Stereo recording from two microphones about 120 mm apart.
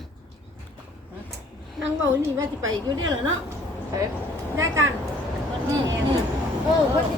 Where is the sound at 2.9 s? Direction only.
35° right (ahead or behind).